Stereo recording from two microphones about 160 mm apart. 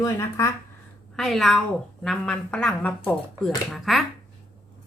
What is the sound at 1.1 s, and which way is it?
Speech, centre (ahead or behind).